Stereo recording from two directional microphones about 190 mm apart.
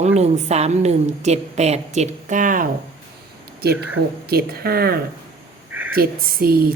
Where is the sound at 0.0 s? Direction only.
35° right (ahead or behind).